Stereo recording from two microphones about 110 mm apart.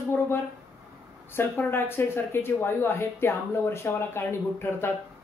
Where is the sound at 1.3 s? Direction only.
20° left (ahead or behind).